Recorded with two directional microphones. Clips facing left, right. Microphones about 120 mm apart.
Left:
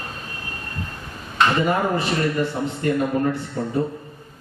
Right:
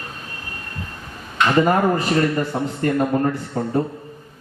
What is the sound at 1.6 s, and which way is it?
A man's voice, 40° right (ahead or behind).